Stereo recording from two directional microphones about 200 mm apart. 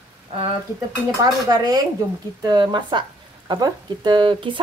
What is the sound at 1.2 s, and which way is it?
Speech, 20° right (ahead or behind).